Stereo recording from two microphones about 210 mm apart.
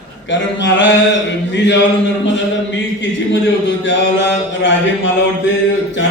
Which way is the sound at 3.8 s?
60° left (ahead or behind).